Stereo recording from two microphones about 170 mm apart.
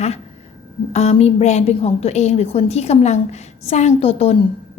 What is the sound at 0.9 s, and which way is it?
A woman's voice, 40° left (ahead or behind).